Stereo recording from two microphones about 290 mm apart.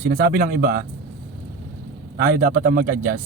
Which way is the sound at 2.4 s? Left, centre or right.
Right.